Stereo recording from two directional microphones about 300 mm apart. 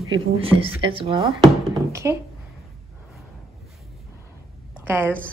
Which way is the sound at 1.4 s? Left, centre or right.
Centre.